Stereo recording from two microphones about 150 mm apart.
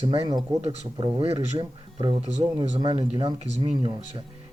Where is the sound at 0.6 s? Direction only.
40° right (ahead or behind).